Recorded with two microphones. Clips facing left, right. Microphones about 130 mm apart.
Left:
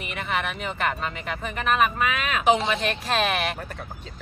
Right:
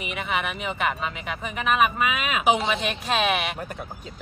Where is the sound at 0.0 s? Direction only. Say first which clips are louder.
Even; centre (ahead or behind).